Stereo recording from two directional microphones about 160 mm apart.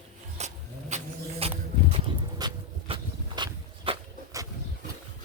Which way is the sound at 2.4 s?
25° right (ahead or behind).